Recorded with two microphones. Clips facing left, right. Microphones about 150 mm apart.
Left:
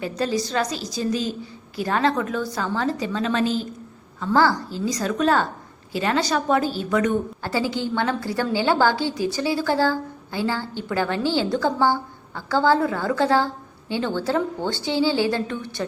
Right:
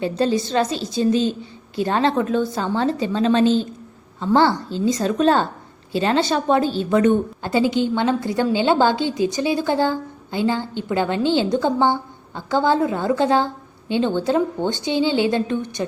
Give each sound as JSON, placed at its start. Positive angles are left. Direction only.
{"t": 0.0, "sound": "a woman's voice", "side_deg": -25}